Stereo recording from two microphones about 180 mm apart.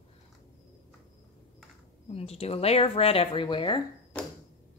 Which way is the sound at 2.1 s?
35° left (ahead or behind).